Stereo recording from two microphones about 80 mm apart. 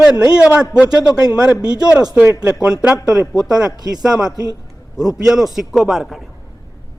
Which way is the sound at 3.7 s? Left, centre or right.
Right.